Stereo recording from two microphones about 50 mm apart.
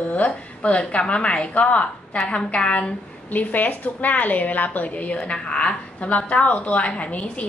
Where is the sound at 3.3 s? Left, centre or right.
Left.